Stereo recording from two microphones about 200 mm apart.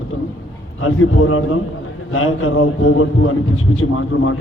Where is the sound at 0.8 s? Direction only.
90° left.